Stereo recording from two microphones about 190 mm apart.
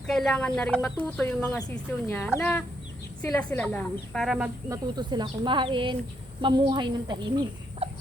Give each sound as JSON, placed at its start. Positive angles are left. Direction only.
{"t": 0.1, "sound": "speech", "side_deg": 5}
{"t": 4.7, "sound": "speech", "side_deg": -25}